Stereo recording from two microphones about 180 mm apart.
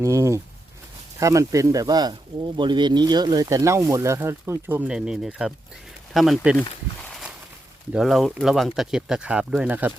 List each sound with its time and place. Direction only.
0.0 s speech: 15° right (ahead or behind)
7.9 s speech: centre (ahead or behind)